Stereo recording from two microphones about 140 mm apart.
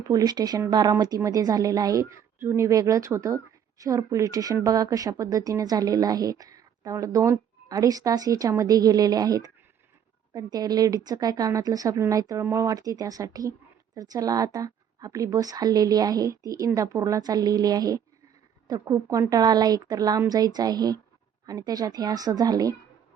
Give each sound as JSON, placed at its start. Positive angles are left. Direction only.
{"t": 0.0, "sound": "speech", "side_deg": -25}